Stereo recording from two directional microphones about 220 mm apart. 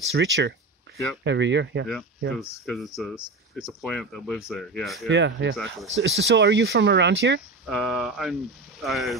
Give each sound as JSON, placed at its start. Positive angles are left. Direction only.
{"t": 0.1, "sound": "speech", "side_deg": -55}
{"t": 2.6, "sound": "speech", "side_deg": 0}
{"t": 5.0, "sound": "speech", "side_deg": -55}
{"t": 5.6, "sound": "speech", "side_deg": 0}
{"t": 6.0, "sound": "speech", "side_deg": -55}
{"t": 7.6, "sound": "speech", "side_deg": 0}